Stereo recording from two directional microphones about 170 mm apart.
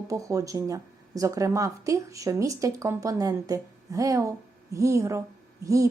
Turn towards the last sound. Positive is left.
turn(degrees=-20)  # may be behind; listen again after turning